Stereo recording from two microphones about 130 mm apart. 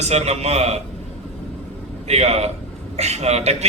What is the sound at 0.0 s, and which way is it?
Speech, 55° right (ahead or behind).